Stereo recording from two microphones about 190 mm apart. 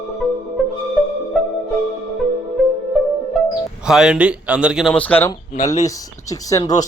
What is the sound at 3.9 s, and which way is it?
Speech, 5° right (ahead or behind).